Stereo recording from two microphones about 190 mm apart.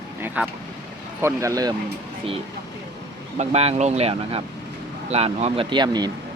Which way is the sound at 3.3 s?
35° right (ahead or behind).